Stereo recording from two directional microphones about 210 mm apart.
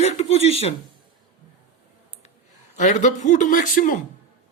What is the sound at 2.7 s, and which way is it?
A man's voice, 35° left (ahead or behind).